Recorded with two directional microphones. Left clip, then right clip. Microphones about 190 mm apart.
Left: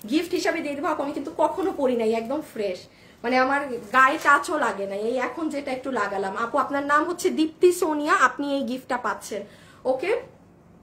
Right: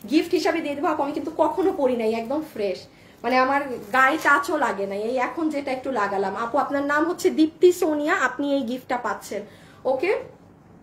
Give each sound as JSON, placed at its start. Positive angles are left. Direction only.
{"t": 0.1, "sound": "a woman's voice", "side_deg": 15}